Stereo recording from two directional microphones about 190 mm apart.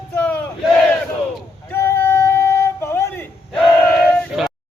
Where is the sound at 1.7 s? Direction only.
10° left (ahead or behind).